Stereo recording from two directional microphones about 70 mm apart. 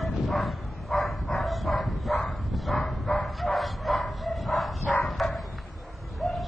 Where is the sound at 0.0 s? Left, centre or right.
Centre.